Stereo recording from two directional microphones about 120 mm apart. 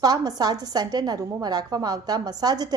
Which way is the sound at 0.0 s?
35° right (ahead or behind).